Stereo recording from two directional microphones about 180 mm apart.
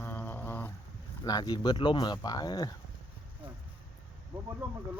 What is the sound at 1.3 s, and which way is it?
Speech, 20° left (ahead or behind).